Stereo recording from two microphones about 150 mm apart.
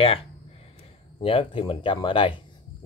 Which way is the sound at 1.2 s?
40° left (ahead or behind).